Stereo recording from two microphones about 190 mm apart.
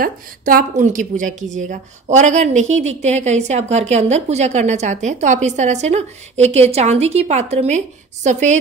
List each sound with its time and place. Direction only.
0.0 s a woman's voice: 50° right (ahead or behind)